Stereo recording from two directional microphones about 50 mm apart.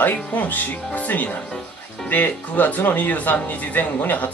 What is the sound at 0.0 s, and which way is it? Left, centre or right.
Speech, left.